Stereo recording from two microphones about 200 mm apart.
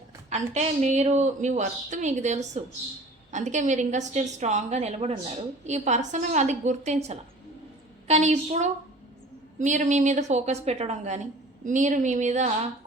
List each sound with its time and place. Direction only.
0.3 s a woman's voice: 35° right (ahead or behind)